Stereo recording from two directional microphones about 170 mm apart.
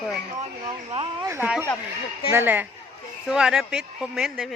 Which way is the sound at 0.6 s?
40° right (ahead or behind).